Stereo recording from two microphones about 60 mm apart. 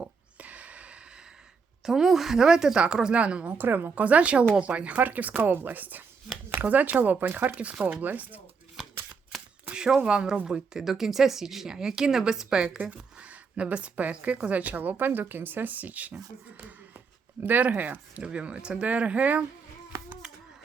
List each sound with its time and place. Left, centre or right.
0.0 s gasp: right
1.8 s a woman's voice: centre
3.6 s speech: right
7.5 s speech: right
9.7 s speech: centre
12.8 s speech: right
16.6 s a sound: right
17.4 s speech: right
18.2 s speech: centre